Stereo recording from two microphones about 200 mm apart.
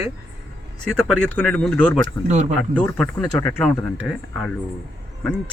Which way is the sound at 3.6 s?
Centre (ahead or behind).